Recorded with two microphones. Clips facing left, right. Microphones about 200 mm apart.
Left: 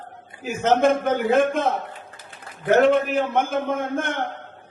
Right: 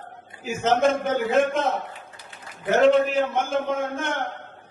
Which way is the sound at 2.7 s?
55° left (ahead or behind).